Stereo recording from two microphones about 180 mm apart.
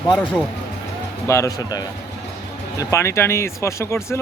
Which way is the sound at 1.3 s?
20° left (ahead or behind).